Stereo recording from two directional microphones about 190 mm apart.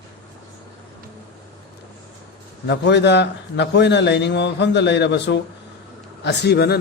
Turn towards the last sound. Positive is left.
turn(degrees=60)  # may be behind; listen again after turning